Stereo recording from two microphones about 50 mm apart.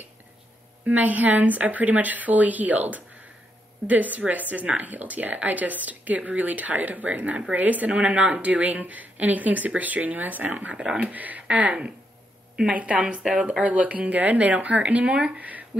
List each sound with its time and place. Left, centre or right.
0.8 s speech: right